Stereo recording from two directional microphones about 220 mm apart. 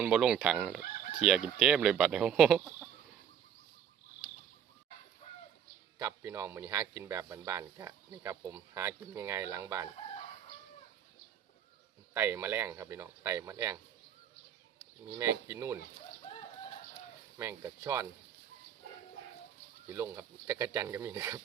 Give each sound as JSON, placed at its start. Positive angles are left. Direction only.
{"t": 0.0, "sound": "speech", "side_deg": -5}
{"t": 6.0, "sound": "speech", "side_deg": -10}
{"t": 12.1, "sound": "speech", "side_deg": -10}
{"t": 15.2, "sound": "speech", "side_deg": -10}
{"t": 17.3, "sound": "speech", "side_deg": -10}
{"t": 19.9, "sound": "speech", "side_deg": -10}